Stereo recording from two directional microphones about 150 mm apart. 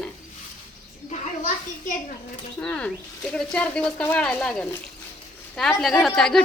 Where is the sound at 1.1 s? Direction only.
55° left (ahead or behind).